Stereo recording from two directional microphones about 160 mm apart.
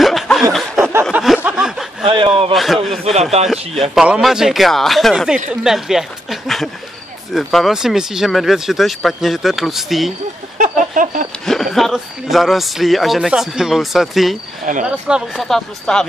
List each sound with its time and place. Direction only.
0.0 s snicker: centre (ahead or behind)
1.1 s a sound: 5° right (ahead or behind)
2.0 s a sound: 35° right (ahead or behind)
2.5 s speech: centre (ahead or behind)
3.1 s speech: 40° right (ahead or behind)
3.9 s speech: 5° right (ahead or behind)
10.6 s a sound: 55° right (ahead or behind)
11.4 s speech: centre (ahead or behind)
14.7 s speech: 55° right (ahead or behind)
15.0 s speech: 5° right (ahead or behind)